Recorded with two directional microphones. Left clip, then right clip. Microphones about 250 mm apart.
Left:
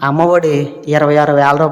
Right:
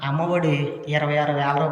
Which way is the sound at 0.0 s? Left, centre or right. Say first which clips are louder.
Left 12 dB; centre.